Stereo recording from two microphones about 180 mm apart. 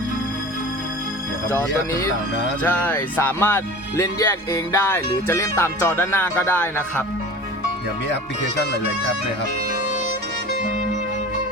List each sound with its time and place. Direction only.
1.5 s speech: 15° left (ahead or behind)